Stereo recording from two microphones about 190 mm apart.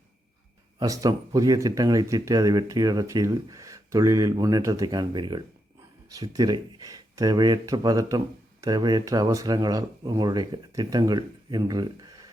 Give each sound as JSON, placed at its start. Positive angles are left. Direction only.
{"t": 0.8, "sound": "speech", "side_deg": -20}